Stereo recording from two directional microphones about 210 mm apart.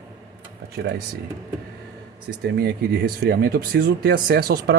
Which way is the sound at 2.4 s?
50° right (ahead or behind).